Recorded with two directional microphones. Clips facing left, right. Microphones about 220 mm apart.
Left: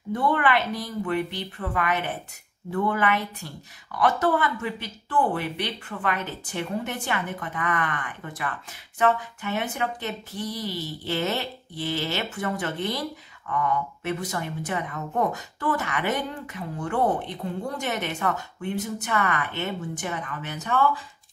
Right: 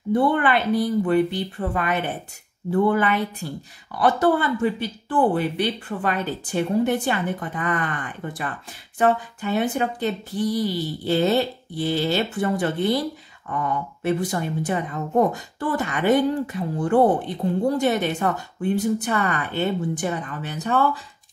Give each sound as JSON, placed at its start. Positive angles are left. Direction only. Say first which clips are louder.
{"t": 0.1, "sound": "speech", "louder": "right 4 dB", "side_deg": -30}